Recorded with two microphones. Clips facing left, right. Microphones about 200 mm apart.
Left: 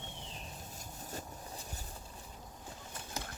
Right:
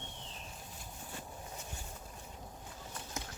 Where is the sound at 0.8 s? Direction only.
40° left (ahead or behind).